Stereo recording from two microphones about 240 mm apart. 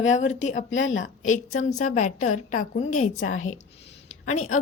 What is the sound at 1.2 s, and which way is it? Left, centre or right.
Speech, left.